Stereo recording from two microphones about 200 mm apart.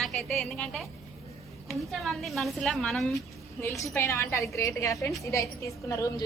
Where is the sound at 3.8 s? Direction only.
15° left (ahead or behind).